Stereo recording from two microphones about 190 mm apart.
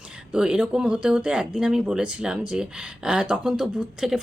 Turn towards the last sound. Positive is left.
turn(degrees=0)  # may be behind; listen again after turning